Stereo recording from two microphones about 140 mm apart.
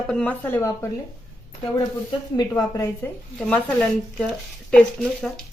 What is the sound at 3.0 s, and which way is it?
A woman's voice, 10° left (ahead or behind).